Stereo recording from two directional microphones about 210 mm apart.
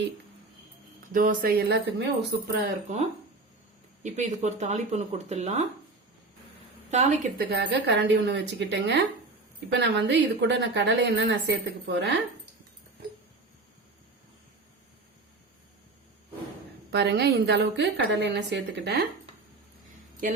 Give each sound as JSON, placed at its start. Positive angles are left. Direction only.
{"t": 1.1, "sound": "speech", "side_deg": -40}
{"t": 4.0, "sound": "speech", "side_deg": -35}
{"t": 6.9, "sound": "speech", "side_deg": -35}
{"t": 7.5, "sound": "a woman's voice", "side_deg": -55}
{"t": 16.9, "sound": "a woman's voice", "side_deg": -55}